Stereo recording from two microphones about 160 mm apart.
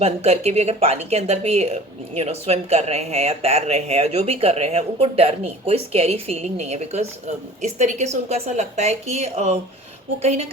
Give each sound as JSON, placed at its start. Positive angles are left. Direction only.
{"t": 0.0, "sound": "a woman's voice", "side_deg": -40}